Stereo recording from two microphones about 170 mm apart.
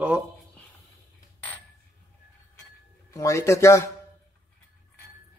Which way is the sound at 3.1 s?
20° left (ahead or behind).